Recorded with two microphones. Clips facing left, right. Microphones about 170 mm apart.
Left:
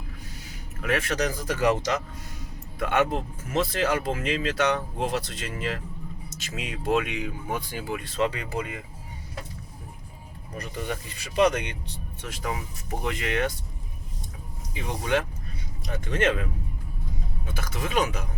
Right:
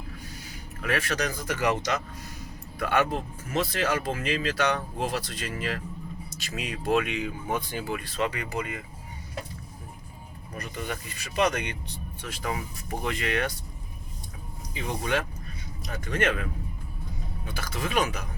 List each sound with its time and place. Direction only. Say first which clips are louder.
0.8 s speech: left 2 dB; 20° left (ahead or behind)
10.8 s speech: left 2 dB; 30° left (ahead or behind)
12.9 s speech: even; 20° left (ahead or behind)
14.7 s speech: left 2 dB; 15° left (ahead or behind)